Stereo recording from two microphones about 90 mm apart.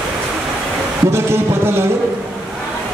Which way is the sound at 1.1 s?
30° right (ahead or behind).